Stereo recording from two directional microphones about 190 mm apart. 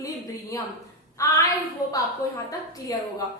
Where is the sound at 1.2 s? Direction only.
15° left (ahead or behind).